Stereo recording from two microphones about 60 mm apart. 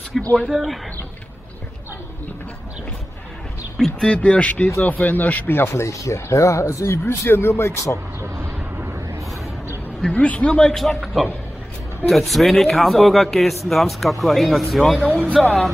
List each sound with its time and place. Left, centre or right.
0.1 s speech: centre
3.7 s speech: centre
4.2 s speech: left
10.1 s speech: left
10.4 s speech: centre